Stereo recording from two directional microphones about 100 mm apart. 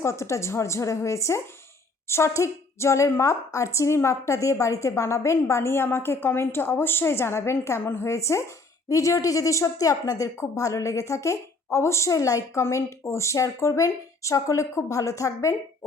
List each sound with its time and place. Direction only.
0.0 s a woman's voice: 30° left (ahead or behind)